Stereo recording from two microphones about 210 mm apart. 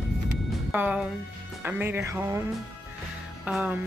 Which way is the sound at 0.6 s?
5° right (ahead or behind).